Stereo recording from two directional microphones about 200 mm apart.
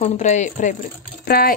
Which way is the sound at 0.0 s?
35° left (ahead or behind).